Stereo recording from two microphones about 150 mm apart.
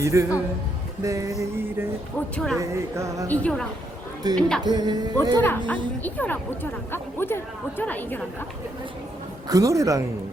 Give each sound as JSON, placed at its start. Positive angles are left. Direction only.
{"t": 0.0, "sound": "music", "side_deg": -20}
{"t": 2.3, "sound": "speech", "side_deg": 5}
{"t": 2.6, "sound": "music", "side_deg": -20}
{"t": 3.2, "sound": "speech", "side_deg": 5}
{"t": 4.6, "sound": "music", "side_deg": -30}
{"t": 5.4, "sound": "speech", "side_deg": 10}
{"t": 9.5, "sound": "music", "side_deg": -20}